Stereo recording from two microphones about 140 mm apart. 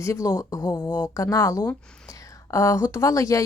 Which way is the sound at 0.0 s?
20° left (ahead or behind).